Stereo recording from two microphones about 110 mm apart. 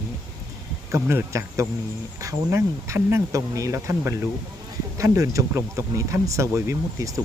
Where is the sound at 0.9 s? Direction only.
25° right (ahead or behind).